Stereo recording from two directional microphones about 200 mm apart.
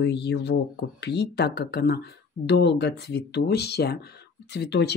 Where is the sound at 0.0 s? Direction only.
60° left (ahead or behind).